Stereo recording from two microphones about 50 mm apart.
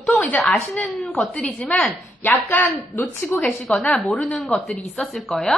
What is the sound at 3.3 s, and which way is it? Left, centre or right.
Speech, left.